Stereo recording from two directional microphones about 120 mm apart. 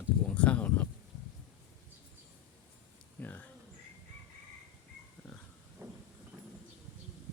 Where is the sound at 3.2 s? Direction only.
15° left (ahead or behind).